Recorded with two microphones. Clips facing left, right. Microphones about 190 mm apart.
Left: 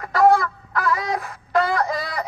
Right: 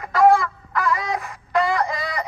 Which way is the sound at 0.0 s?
Centre (ahead or behind).